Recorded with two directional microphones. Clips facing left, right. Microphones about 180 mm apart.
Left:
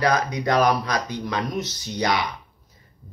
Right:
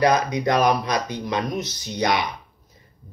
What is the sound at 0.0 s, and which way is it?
Speech, 20° right (ahead or behind).